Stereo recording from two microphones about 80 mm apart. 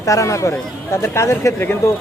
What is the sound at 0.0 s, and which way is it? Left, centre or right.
Speech, left.